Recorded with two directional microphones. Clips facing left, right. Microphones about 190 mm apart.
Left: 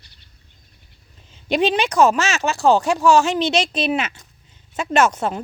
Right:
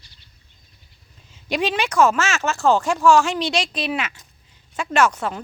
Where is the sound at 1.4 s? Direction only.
25° left (ahead or behind).